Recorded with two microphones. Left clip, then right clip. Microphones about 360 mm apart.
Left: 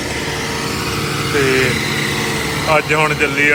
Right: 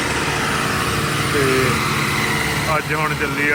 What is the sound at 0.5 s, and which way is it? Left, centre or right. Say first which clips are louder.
Vehicle: right 1 dB; centre.